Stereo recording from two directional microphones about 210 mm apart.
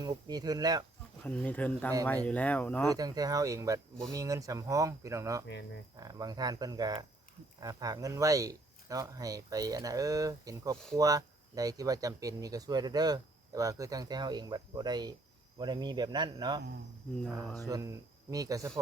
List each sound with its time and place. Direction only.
0.0 s speech: 20° right (ahead or behind)
1.2 s speech: 5° left (ahead or behind)
2.9 s speech: 15° right (ahead or behind)
17.7 s speech: 15° right (ahead or behind)